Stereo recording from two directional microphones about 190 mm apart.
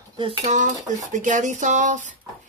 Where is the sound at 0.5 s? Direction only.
40° right (ahead or behind).